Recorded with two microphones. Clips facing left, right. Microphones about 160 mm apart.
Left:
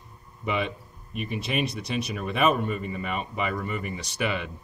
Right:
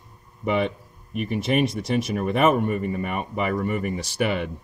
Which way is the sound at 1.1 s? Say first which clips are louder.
Right 6 dB; 50° right (ahead or behind).